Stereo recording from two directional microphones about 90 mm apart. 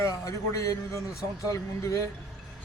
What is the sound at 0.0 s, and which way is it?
A man's voice, 35° left (ahead or behind).